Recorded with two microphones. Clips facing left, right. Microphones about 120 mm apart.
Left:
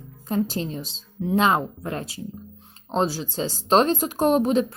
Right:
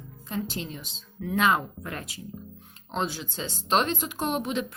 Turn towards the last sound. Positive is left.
turn(degrees=40)  # may be behind; listen again after turning